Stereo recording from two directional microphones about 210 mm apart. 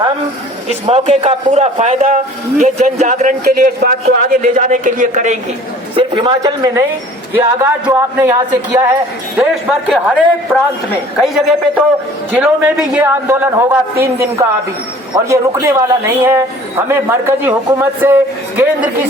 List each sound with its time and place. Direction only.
0.7 s a man's voice: 30° right (ahead or behind)
5.9 s a man's voice: 25° right (ahead or behind)
9.9 s a man's voice: 5° right (ahead or behind)